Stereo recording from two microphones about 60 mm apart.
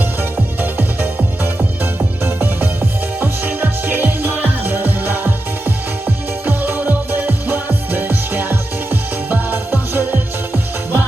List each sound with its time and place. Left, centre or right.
0.2 s music: right